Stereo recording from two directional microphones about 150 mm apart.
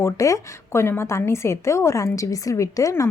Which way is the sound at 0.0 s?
20° left (ahead or behind).